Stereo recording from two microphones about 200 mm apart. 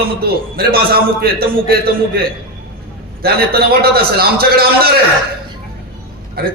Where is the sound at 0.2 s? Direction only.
50° right (ahead or behind).